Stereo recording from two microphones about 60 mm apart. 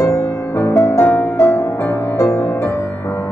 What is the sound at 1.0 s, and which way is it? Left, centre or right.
Music, left.